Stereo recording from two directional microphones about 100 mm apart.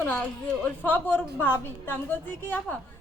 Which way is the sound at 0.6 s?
20° left (ahead or behind).